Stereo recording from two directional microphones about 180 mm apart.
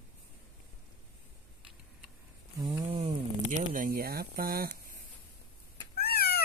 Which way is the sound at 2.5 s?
25° right (ahead or behind).